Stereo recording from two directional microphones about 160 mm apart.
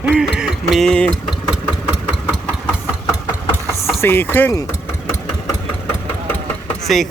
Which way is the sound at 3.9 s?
15° left (ahead or behind).